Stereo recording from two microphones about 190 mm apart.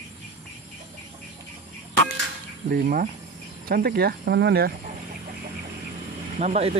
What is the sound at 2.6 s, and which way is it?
Speech, 50° right (ahead or behind).